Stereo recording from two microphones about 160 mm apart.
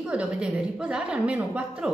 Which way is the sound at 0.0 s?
5° right (ahead or behind).